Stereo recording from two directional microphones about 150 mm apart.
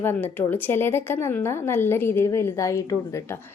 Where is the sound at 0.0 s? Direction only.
15° left (ahead or behind).